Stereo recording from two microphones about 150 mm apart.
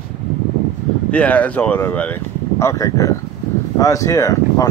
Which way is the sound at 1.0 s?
10° left (ahead or behind).